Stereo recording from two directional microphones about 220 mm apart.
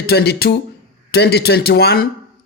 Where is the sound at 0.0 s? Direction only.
45° left (ahead or behind).